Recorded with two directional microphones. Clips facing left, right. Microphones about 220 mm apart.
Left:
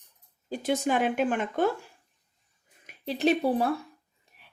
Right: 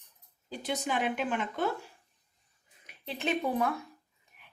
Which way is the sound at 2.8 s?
40° left (ahead or behind).